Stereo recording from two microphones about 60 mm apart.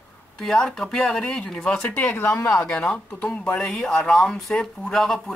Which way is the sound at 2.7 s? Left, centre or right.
Centre.